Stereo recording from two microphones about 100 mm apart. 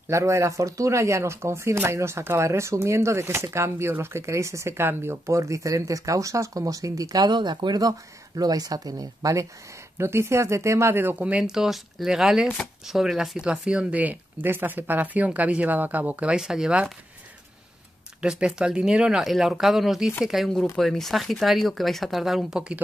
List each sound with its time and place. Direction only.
0.1 s speech: 30° right (ahead or behind); by 16.9 s 5° right (ahead or behind)
18.2 s speech: 10° right (ahead or behind)